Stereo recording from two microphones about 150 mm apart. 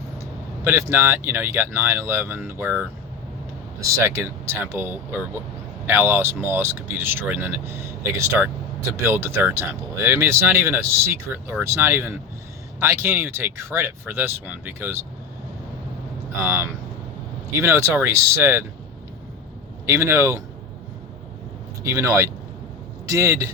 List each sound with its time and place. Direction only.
0.6 s speech: 15° right (ahead or behind)
3.9 s speech: 20° right (ahead or behind)
17.6 s speech: 20° right (ahead or behind)
19.8 s speech: 20° right (ahead or behind)
21.8 s speech: 20° right (ahead or behind)